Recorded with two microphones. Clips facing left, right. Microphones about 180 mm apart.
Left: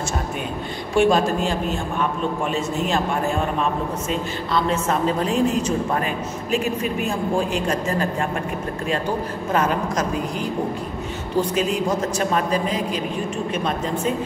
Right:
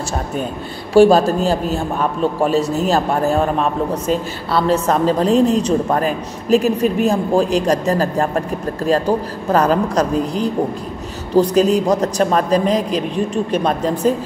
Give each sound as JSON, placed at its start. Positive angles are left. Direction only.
{"t": 0.9, "sound": "a man's voice", "side_deg": -35}
{"t": 4.6, "sound": "a man's voice", "side_deg": -35}
{"t": 14.0, "sound": "a man's voice", "side_deg": -40}